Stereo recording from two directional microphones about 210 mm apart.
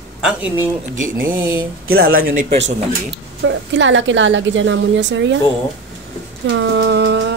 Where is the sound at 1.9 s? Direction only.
80° right.